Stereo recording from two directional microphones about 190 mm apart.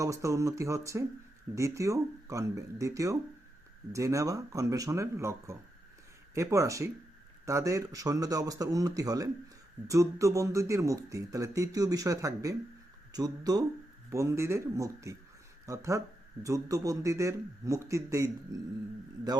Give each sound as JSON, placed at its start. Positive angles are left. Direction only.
{"t": 0.0, "sound": "speech", "side_deg": -15}